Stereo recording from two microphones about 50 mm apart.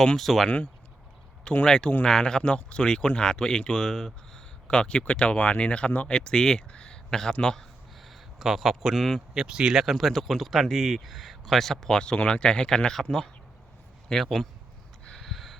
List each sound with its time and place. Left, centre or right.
0.2 s speech: centre
0.4 s speech: left
1.6 s speech: centre
8.0 s a sound: centre
9.0 s speech: centre
9.3 s speech: centre
9.8 s speech: centre
15.2 s a sound: centre